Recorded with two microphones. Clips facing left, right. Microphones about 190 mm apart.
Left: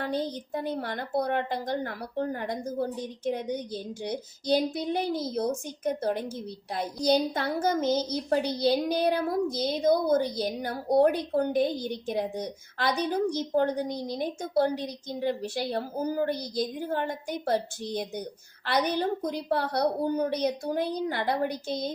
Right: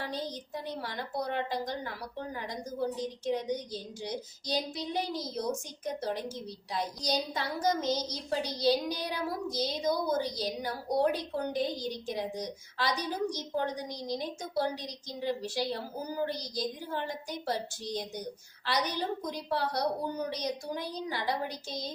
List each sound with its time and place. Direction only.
0.0 s a child's voice: 55° left (ahead or behind)